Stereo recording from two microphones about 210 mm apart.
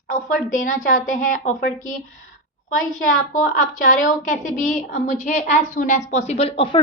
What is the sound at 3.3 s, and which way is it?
A woman's voice, 40° left (ahead or behind).